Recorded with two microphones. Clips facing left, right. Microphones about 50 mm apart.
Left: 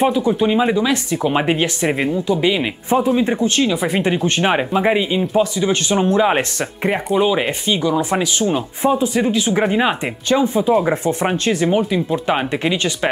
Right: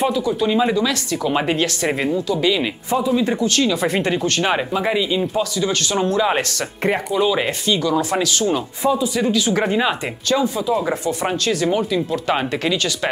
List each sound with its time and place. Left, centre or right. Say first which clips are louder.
0.0 s speech: left 3 dB; left
3.0 s speech: left 2 dB; left
3.3 s speech: left 1 dB; left
8.9 s speech: left 3 dB; left
9.2 s speech: left 1 dB; left